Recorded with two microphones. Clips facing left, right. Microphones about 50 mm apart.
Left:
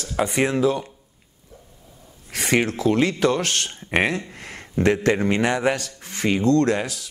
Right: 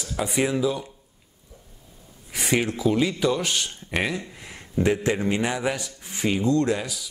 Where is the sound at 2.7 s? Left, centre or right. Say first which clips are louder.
Left 2 dB; left.